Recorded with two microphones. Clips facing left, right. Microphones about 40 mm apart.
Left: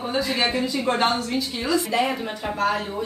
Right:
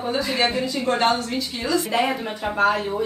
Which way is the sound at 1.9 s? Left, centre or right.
Centre.